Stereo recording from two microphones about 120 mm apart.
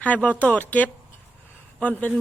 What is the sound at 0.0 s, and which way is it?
Speech, 10° left (ahead or behind).